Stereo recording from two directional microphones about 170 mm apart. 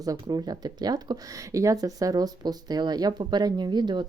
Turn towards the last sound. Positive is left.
turn(degrees=-25)  # may be behind; listen again after turning